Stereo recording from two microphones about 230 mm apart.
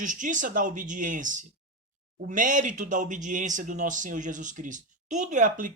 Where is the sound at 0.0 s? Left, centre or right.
Right.